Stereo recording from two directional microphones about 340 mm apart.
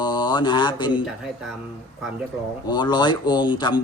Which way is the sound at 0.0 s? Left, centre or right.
Centre.